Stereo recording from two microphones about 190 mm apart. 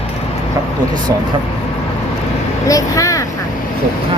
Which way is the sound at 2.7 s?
15° left (ahead or behind).